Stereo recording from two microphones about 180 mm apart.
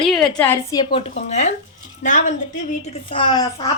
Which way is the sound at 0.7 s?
25° left (ahead or behind).